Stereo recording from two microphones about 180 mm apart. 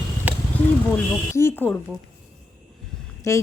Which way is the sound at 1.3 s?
15° left (ahead or behind).